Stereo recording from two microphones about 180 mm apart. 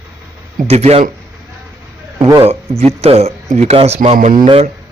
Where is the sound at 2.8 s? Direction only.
35° right (ahead or behind).